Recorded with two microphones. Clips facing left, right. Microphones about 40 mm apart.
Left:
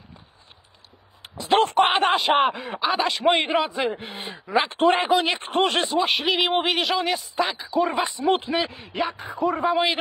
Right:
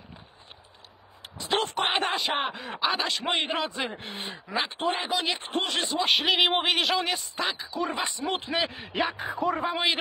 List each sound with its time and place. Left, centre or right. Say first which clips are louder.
1.2 s a sound: left 8 dB; left
2.0 s speech: left 8 dB; left
2.7 s speech: left 4 dB; centre
4.6 s speech: left 11 dB; left
5.0 s speech: left 7 dB; left
6.0 s a man's voice: left 1 dB; centre
8.5 s a man's voice: left 3 dB; centre